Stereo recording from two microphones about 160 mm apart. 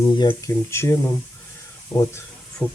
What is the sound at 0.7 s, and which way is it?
Speech, 15° left (ahead or behind).